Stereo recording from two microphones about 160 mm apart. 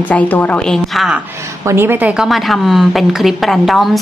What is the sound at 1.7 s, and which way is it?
A woman's voice, 15° right (ahead or behind).